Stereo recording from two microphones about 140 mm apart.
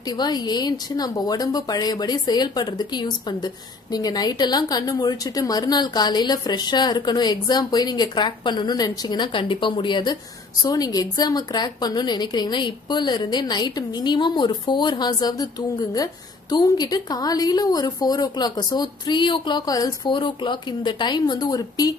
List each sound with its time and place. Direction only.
0.2 s a woman's voice: 30° left (ahead or behind)